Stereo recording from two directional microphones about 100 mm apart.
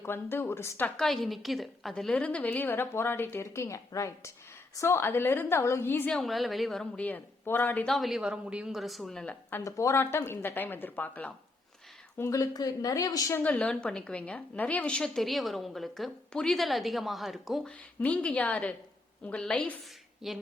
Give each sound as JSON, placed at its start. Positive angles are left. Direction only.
{"t": 0.0, "sound": "a woman's voice", "side_deg": 20}
{"t": 0.9, "sound": "a woman's voice", "side_deg": 5}
{"t": 6.1, "sound": "a woman's voice", "side_deg": 5}
{"t": 7.0, "sound": "a woman's voice", "side_deg": 20}
{"t": 7.9, "sound": "a woman's voice", "side_deg": 0}
{"t": 9.2, "sound": "a woman's voice", "side_deg": 20}
{"t": 9.6, "sound": "a woman's voice", "side_deg": 30}
{"t": 12.1, "sound": "a woman's voice", "side_deg": 30}
{"t": 13.3, "sound": "a woman's voice", "side_deg": 15}
{"t": 18.0, "sound": "a woman's voice", "side_deg": 10}
{"t": 20.2, "sound": "a woman's voice", "side_deg": 0}